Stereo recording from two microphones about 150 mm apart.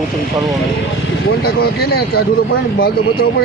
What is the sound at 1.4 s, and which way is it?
Speech, 90° left.